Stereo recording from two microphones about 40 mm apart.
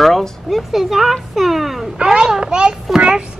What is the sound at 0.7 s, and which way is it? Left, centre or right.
Speech, centre.